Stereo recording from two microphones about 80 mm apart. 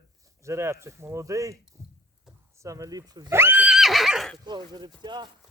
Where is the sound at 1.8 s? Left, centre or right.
Right.